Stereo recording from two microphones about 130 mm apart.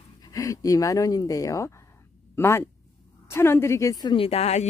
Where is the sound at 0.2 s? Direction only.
30° left (ahead or behind).